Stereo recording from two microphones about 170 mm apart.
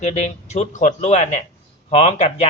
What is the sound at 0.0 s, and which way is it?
Speech, 45° left (ahead or behind).